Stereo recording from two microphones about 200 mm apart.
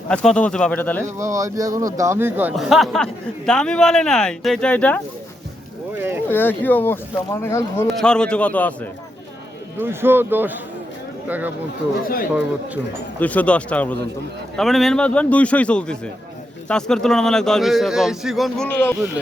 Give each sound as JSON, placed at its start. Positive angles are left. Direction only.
{"t": 0.1, "sound": "speech", "side_deg": 5}
{"t": 1.2, "sound": "speech", "side_deg": -15}
{"t": 6.0, "sound": "speech", "side_deg": -10}
{"t": 6.2, "sound": "speech", "side_deg": 10}
{"t": 9.7, "sound": "speech", "side_deg": -10}
{"t": 12.0, "sound": "speech", "side_deg": 45}
{"t": 13.1, "sound": "speech", "side_deg": 10}